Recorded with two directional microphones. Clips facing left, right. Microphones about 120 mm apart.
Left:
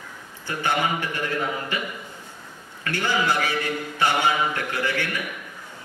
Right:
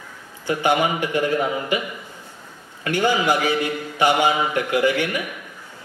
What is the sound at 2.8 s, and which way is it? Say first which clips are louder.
A man's voice: right 5 dB; 15° right (ahead or behind).